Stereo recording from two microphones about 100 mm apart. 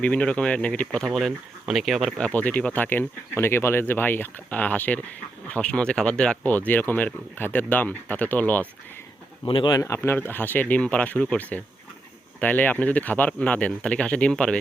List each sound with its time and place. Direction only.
0.0 s speech: 10° left (ahead or behind)
2.1 s speech: 15° left (ahead or behind)
9.6 s speech: 35° left (ahead or behind); by 14.6 s 10° left (ahead or behind)